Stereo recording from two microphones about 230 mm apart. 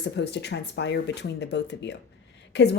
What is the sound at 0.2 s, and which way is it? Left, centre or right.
A woman's voice, left.